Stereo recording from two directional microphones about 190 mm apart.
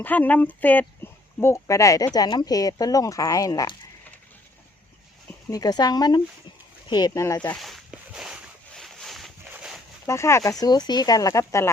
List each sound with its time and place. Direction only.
0.0 s speech: 10° left (ahead or behind)
5.5 s speech: 20° left (ahead or behind)
7.5 s a sound: centre (ahead or behind)
10.1 s speech: 15° left (ahead or behind)